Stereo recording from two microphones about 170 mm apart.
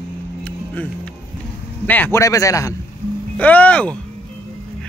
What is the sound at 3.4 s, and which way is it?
Speech, 10° left (ahead or behind).